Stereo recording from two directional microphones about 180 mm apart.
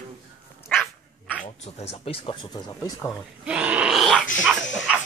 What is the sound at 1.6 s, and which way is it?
Speech, 35° left (ahead or behind).